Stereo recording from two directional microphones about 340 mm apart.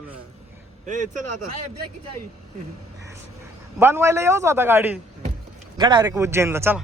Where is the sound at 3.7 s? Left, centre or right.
Centre.